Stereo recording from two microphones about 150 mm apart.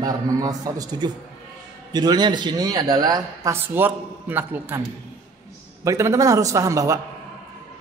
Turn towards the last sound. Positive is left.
turn(degrees=-20)  # may be behind; listen again after turning